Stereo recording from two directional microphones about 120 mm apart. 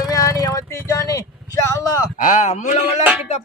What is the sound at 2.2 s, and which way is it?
Speech, 80° left.